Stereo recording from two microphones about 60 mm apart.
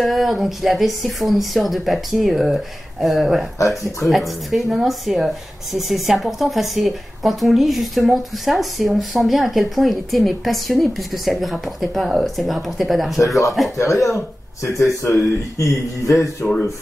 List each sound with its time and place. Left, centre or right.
0.0 s speech: centre
13.7 s speech: left
15.7 s speech: centre